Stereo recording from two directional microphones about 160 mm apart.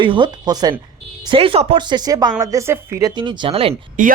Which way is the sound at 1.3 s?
35° right (ahead or behind).